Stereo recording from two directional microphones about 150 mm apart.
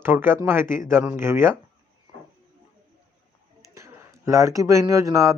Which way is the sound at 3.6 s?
20° right (ahead or behind).